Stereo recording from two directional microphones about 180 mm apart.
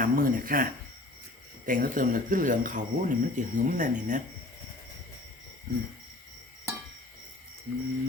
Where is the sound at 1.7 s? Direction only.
50° right (ahead or behind).